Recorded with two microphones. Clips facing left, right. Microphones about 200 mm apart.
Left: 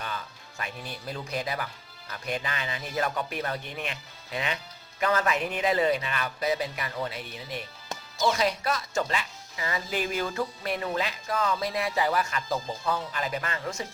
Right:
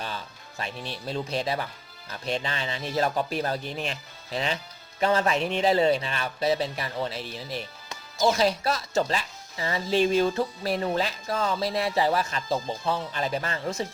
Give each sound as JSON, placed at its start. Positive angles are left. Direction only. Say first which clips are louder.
{"t": 0.0, "sound": "speech", "louder": "right 1 dB", "side_deg": -30}